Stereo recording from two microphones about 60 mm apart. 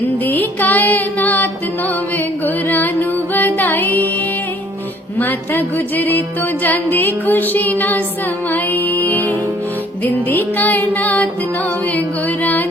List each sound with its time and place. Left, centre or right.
0.0 s music: left
5.1 s music: left